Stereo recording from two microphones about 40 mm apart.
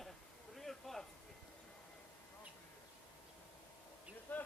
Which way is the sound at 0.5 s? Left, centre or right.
Centre.